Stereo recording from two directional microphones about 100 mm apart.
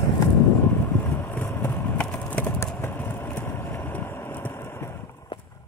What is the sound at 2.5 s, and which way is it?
Vehicle, 20° left (ahead or behind).